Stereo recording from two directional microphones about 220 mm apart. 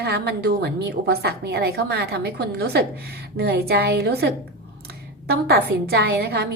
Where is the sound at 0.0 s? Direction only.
45° right (ahead or behind).